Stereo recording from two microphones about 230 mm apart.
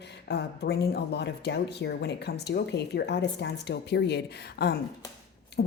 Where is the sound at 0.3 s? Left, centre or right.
Left.